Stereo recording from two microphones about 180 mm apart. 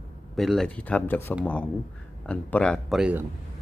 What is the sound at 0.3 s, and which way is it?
Speech, centre (ahead or behind).